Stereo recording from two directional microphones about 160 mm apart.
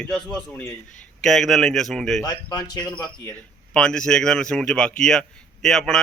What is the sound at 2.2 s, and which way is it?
Speech, 25° left (ahead or behind).